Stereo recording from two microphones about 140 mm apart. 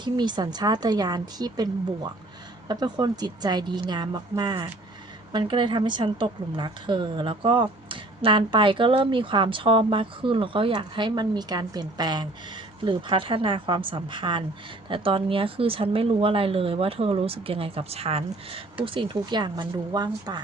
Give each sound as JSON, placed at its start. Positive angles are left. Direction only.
{"t": 0.0, "sound": "a woman's voice", "side_deg": -30}